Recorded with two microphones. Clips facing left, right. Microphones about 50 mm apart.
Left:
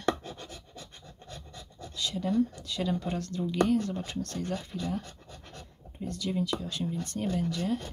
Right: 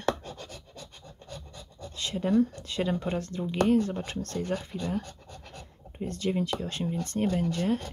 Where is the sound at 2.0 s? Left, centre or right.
Right.